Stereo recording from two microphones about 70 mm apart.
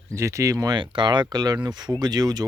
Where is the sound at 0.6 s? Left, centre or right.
Right.